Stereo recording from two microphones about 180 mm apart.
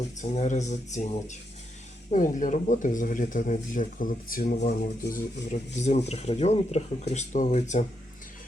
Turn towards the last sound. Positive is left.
turn(degrees=40)  # may be behind; listen again after turning